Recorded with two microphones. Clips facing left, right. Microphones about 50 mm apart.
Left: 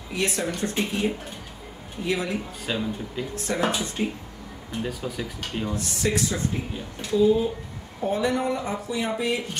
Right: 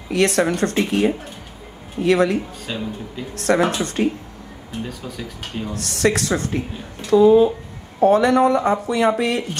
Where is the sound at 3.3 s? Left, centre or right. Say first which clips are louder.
Right 12 dB; right.